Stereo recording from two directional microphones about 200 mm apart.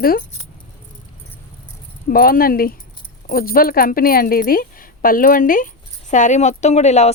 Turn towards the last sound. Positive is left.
turn(degrees=35)  # may be behind; listen again after turning